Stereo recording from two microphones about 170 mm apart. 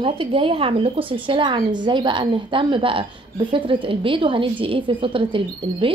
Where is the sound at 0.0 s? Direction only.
30° right (ahead or behind).